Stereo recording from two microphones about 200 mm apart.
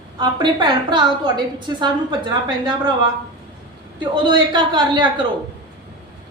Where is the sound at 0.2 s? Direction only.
20° right (ahead or behind).